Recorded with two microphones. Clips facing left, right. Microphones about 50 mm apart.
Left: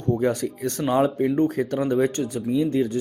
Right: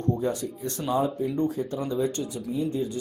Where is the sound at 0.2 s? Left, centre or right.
Left.